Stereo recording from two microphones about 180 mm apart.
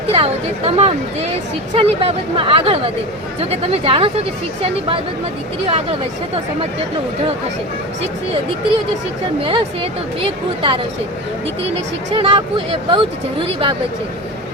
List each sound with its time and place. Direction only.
0.1 s speech: 35° right (ahead or behind)
5.6 s speech: 30° right (ahead or behind)
9.4 s a woman's voice: 30° right (ahead or behind)
12.1 s a woman's voice: 30° right (ahead or behind)